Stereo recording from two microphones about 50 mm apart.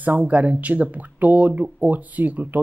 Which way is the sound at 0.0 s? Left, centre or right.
Right.